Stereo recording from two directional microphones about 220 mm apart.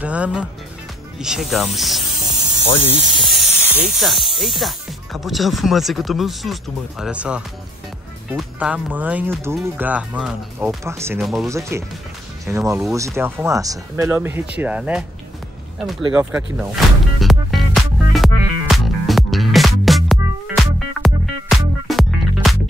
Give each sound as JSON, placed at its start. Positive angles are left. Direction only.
{"t": 0.0, "sound": "speech", "side_deg": -5}
{"t": 2.3, "sound": "snake", "side_deg": 25}
{"t": 3.3, "sound": "speech", "side_deg": 0}
{"t": 11.1, "sound": "speech", "side_deg": 0}
{"t": 11.4, "sound": "speech", "side_deg": -15}
{"t": 16.5, "sound": "music", "side_deg": 0}
{"t": 18.7, "sound": "music", "side_deg": 0}